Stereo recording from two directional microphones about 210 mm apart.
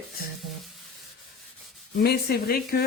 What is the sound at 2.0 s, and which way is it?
Speech, 50° left (ahead or behind).